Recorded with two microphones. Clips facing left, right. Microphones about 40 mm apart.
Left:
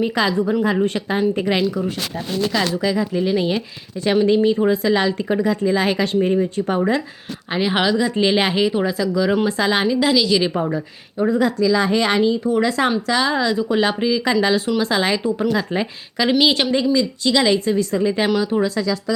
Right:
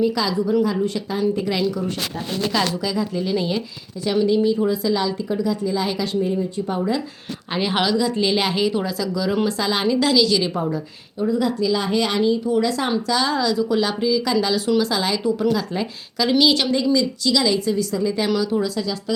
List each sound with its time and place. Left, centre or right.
0.0 s a woman's voice: left
2.7 s speech: left
4.0 s speech: left
7.5 s speech: centre; by 9.8 s left
9.8 s speech: centre
11.2 s speech: left
12.9 s a woman's voice: left